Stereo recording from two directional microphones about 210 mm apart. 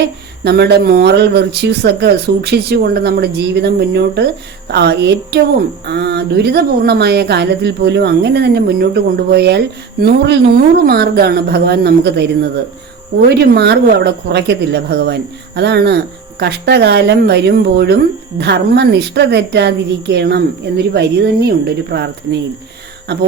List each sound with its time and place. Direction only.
0.4 s speech: 50° right (ahead or behind)
13.5 s speech: 50° right (ahead or behind)